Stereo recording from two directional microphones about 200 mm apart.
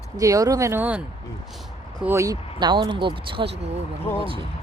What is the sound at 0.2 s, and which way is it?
Speech, 15° right (ahead or behind).